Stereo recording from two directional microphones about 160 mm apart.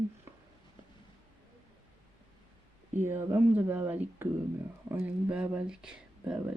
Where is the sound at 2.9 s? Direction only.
15° right (ahead or behind).